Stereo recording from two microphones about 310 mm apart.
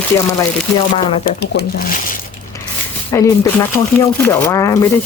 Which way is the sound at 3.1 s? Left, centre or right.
Centre.